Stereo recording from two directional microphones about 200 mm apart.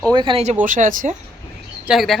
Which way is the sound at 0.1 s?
25° right (ahead or behind).